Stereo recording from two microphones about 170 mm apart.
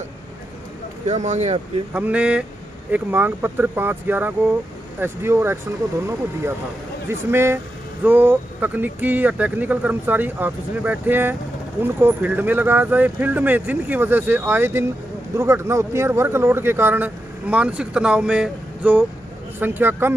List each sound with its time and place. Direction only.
1.0 s speech: 40° right (ahead or behind)
2.0 s speech: 5° right (ahead or behind)
7.1 s speech: 15° right (ahead or behind)